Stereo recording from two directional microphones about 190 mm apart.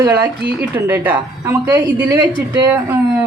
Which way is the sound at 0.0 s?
15° right (ahead or behind).